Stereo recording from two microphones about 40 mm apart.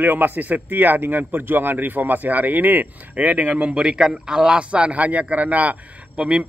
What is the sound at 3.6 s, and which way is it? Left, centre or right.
Speech, right.